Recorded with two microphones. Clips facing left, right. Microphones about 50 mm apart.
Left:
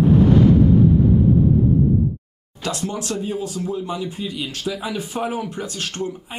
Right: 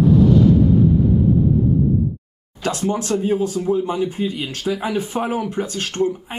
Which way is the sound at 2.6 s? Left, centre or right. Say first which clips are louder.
Right 4 dB; right.